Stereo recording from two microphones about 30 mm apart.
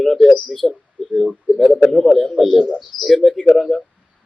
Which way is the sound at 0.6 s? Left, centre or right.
Centre.